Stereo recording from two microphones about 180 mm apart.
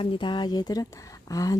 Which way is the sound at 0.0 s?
30° left (ahead or behind).